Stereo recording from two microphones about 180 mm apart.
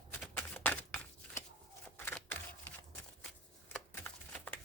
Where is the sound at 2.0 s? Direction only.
10° left (ahead or behind).